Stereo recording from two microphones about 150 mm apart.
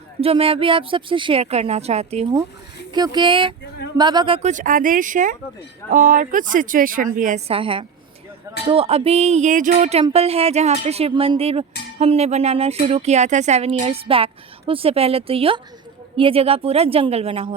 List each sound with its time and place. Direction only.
0.2 s speech: 40° right (ahead or behind)
2.9 s speech: 30° right (ahead or behind)
4.4 s speech: 60° right (ahead or behind)
7.4 s speech: 35° right (ahead or behind); by 10.0 s 55° right (ahead or behind)
10.0 s speech: 40° right (ahead or behind)